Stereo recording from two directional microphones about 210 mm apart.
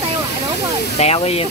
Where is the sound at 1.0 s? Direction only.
30° left (ahead or behind).